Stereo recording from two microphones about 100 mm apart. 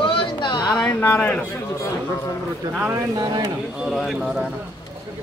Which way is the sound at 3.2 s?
45° right (ahead or behind).